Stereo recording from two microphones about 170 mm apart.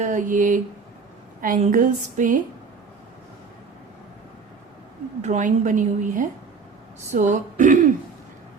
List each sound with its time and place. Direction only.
0.0 s a woman's voice: 50° right (ahead or behind)
5.2 s a woman's voice: 45° right (ahead or behind)